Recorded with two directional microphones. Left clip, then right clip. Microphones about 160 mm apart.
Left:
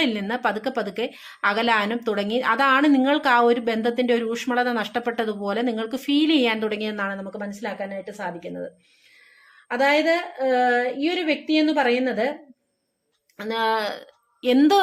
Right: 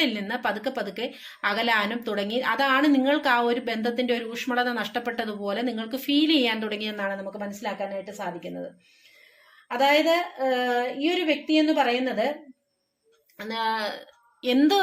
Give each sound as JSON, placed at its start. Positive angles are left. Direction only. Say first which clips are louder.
{"t": 0.0, "sound": "a woman's voice", "louder": "left 3 dB", "side_deg": 40}
{"t": 9.6, "sound": "a woman's voice", "louder": "left 1 dB", "side_deg": 40}
{"t": 13.3, "sound": "a woman's voice", "louder": "left 4 dB", "side_deg": 40}